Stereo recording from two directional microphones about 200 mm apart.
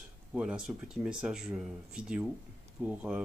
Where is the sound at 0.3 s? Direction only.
5° right (ahead or behind).